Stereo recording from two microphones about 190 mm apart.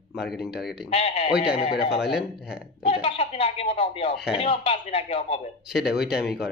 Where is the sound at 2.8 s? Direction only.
30° left (ahead or behind).